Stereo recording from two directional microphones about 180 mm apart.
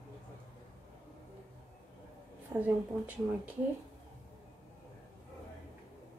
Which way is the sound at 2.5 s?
10° right (ahead or behind).